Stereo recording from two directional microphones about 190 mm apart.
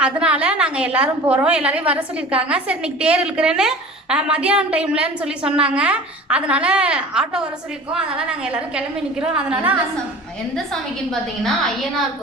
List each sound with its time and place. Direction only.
0.0 s a woman's voice: 5° right (ahead or behind)